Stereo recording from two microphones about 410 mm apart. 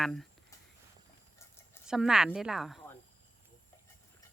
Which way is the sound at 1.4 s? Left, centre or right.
Centre.